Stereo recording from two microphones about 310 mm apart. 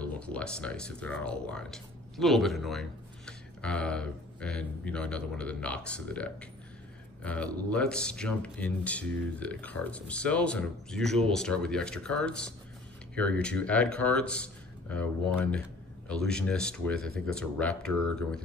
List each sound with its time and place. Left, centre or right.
0.0 s speech: centre